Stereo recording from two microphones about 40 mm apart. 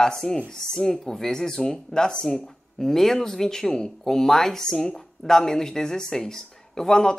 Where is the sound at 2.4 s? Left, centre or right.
Centre.